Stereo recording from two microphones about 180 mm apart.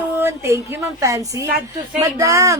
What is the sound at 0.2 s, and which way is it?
Speech, 15° right (ahead or behind).